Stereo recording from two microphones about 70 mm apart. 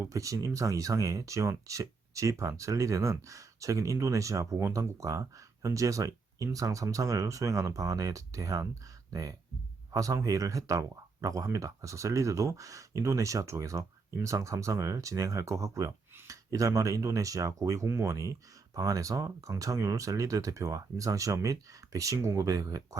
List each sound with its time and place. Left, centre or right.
0.1 s speech: right